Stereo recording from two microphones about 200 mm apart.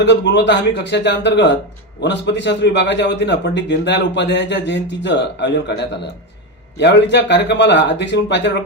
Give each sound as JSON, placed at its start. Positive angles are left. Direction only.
{"t": 0.0, "sound": "a man's voice", "side_deg": 60}